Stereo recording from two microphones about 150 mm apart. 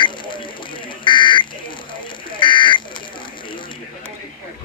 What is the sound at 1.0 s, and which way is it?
Buzzer, 35° left (ahead or behind).